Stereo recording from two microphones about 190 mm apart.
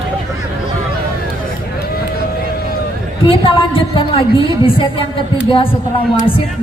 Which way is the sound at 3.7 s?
25° left (ahead or behind).